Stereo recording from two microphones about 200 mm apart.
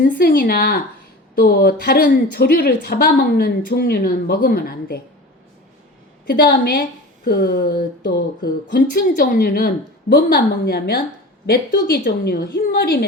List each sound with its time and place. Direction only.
0.0 s speech: 50° left (ahead or behind)
6.2 s speech: 45° left (ahead or behind)